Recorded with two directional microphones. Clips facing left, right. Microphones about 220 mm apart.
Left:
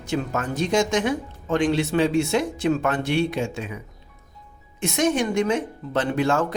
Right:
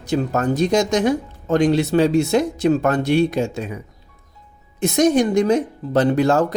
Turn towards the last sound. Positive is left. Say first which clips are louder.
# right 6 dB
turn(degrees=-40)  # may be behind; listen again after turning